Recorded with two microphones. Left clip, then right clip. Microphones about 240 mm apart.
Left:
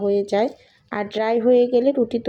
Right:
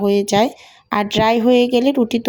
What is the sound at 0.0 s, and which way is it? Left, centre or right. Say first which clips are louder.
Speech: right 4 dB; right.